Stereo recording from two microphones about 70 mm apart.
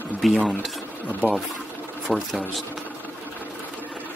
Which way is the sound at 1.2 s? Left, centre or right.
Left.